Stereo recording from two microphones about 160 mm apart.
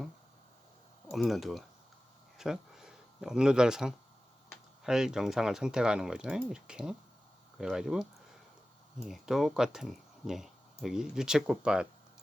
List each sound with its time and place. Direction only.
1.1 s speech: centre (ahead or behind)
9.0 s speech: centre (ahead or behind)